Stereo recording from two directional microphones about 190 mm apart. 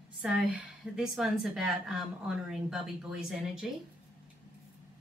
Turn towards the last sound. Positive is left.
turn(degrees=-5)  # may be behind; listen again after turning